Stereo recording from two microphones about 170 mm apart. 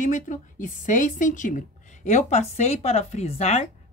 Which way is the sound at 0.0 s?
50° left (ahead or behind).